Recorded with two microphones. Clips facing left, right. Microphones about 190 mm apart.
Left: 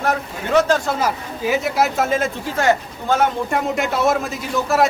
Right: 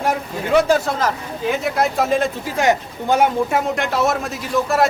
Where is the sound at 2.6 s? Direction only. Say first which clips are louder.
Even; 15° right (ahead or behind).